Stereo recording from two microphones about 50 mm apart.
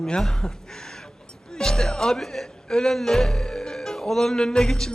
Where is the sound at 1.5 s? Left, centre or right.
Centre.